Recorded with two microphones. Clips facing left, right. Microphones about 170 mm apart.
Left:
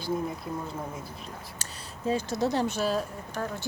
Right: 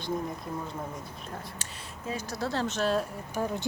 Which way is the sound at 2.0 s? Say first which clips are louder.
Left 6 dB; 25° left (ahead or behind).